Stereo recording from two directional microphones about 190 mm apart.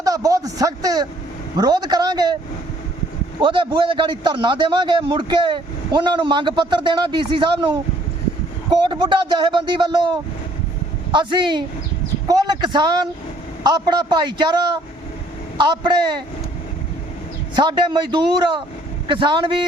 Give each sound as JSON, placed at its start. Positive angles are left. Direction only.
{"t": 0.0, "sound": "a sound", "side_deg": -20}
{"t": 1.5, "sound": "a man's voice", "side_deg": -20}
{"t": 3.4, "sound": "a man's voice", "side_deg": -25}
{"t": 15.5, "sound": "a man's voice", "side_deg": -25}
{"t": 17.6, "sound": "a man's voice", "side_deg": -25}